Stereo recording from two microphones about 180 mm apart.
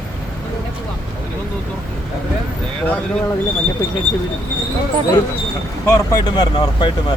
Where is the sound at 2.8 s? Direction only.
10° left (ahead or behind).